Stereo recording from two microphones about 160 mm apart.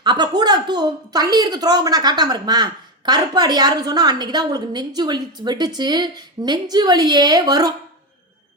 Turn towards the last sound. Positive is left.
turn(degrees=-25)  # may be behind; listen again after turning